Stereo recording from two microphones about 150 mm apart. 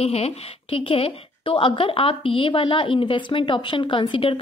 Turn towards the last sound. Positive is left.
turn(degrees=35)  # may be behind; listen again after turning